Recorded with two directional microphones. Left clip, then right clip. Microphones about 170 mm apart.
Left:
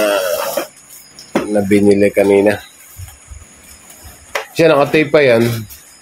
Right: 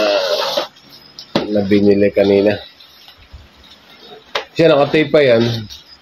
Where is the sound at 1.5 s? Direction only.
5° left (ahead or behind).